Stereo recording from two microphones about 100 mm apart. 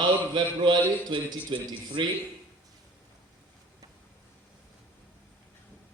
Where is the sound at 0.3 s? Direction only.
50° right (ahead or behind).